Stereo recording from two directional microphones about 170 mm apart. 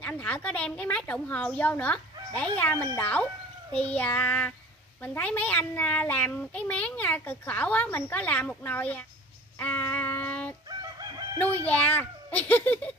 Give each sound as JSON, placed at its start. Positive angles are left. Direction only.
{"t": 0.0, "sound": "a child's voice", "side_deg": 10}
{"t": 9.6, "sound": "child singing", "side_deg": 10}
{"t": 11.0, "sound": "crowing", "side_deg": -25}
{"t": 11.3, "sound": "a child's voice", "side_deg": 10}